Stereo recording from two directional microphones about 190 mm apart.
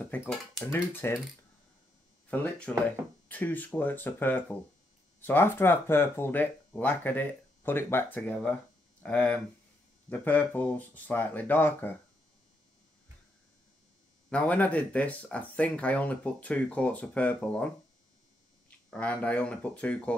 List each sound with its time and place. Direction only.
0.0 s speech: 5° left (ahead or behind)
2.3 s speech: 10° left (ahead or behind)
14.3 s speech: 5° left (ahead or behind)
18.9 s speech: 5° left (ahead or behind)